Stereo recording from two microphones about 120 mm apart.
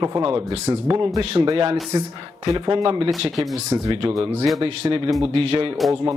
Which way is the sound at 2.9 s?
50° right (ahead or behind).